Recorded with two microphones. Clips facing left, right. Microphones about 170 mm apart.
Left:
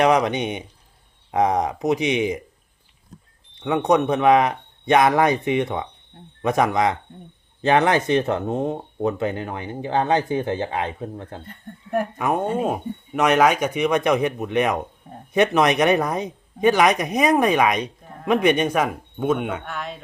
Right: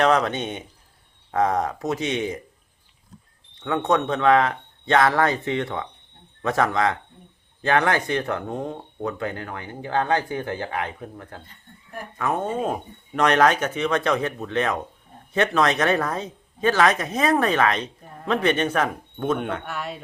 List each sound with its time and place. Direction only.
0.0 s speech: 15° left (ahead or behind)
3.6 s speech: 15° left (ahead or behind)
11.4 s speech: 65° left (ahead or behind)
12.1 s speech: 15° left (ahead or behind)
19.6 s speech: 5° right (ahead or behind)